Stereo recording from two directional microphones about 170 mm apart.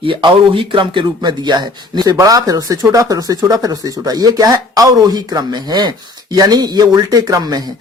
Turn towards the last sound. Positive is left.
turn(degrees=-20)  # may be behind; listen again after turning